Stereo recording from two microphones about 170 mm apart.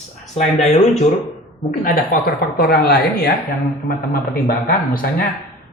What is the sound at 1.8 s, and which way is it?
A woman's voice, 55° left (ahead or behind).